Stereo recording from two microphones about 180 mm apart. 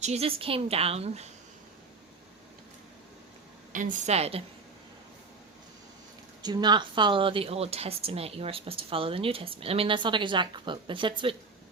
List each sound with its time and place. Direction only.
0.0 s speech: 35° right (ahead or behind)
3.7 s speech: 45° right (ahead or behind)
6.4 s speech: 25° right (ahead or behind)